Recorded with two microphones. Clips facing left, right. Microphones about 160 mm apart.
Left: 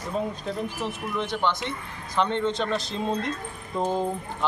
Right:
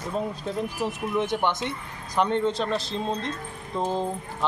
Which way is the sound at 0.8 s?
15° right (ahead or behind).